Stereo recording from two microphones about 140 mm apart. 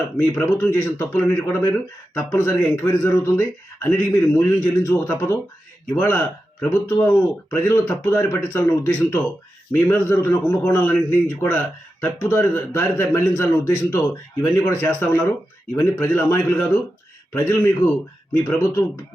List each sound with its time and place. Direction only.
0.2 s a man's voice: 15° left (ahead or behind)